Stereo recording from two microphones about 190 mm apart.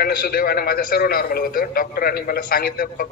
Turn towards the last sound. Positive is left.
turn(degrees=50)  # may be behind; listen again after turning